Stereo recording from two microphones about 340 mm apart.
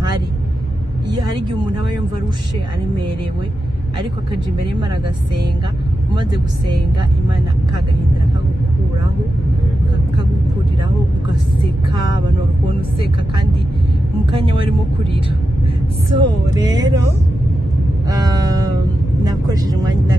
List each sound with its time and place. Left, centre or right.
14.4 s speech: centre
16.1 s speech: centre
18.0 s music: centre
19.2 s speech: centre